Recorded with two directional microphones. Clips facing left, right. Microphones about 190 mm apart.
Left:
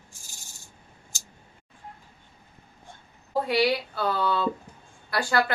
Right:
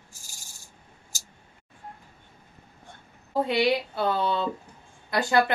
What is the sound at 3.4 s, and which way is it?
A woman's voice, 20° right (ahead or behind).